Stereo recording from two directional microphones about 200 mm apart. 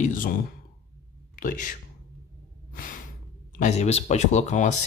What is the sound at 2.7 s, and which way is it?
Sigh, 45° left (ahead or behind).